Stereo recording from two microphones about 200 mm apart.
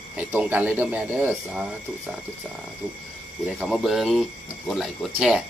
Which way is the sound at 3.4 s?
Centre (ahead or behind).